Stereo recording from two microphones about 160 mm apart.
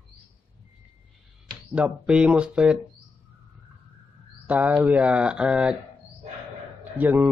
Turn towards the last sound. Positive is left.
turn(degrees=-10)  # may be behind; listen again after turning